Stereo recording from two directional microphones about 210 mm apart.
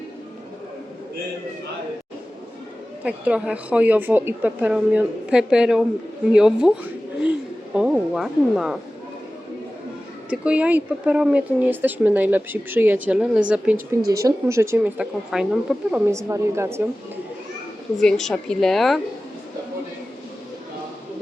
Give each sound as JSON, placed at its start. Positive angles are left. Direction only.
{"t": 3.0, "sound": "a woman's voice", "side_deg": -5}
{"t": 10.2, "sound": "speech", "side_deg": -5}
{"t": 18.0, "sound": "a woman's voice", "side_deg": 5}